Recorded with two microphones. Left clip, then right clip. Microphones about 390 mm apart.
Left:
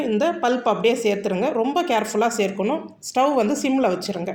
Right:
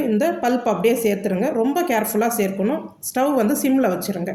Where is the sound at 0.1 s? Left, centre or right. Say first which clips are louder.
Left 1 dB; right.